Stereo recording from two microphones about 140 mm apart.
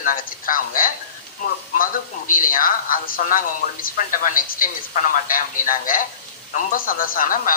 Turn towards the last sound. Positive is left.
turn(degrees=75)  # may be behind; listen again after turning